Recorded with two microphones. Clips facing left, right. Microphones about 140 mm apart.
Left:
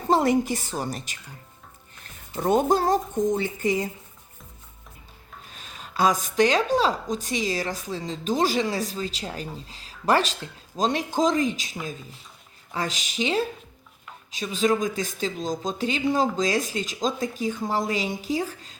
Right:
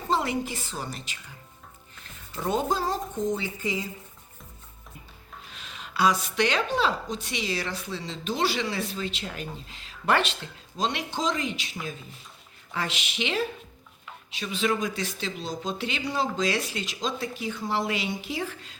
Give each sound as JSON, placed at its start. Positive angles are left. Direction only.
{"t": 0.1, "sound": "a woman's voice", "side_deg": 40}
{"t": 2.3, "sound": "a woman's voice", "side_deg": 45}
{"t": 5.5, "sound": "speech", "side_deg": 45}